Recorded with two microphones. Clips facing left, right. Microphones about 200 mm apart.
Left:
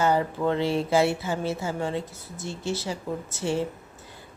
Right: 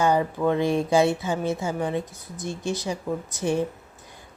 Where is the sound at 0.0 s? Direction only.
15° right (ahead or behind).